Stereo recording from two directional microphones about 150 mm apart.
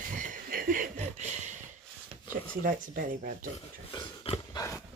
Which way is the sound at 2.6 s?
70° right (ahead or behind).